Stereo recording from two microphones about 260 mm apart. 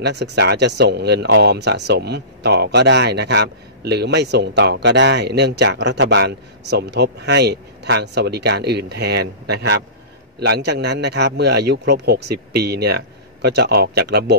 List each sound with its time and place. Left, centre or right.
0.0 s speech: right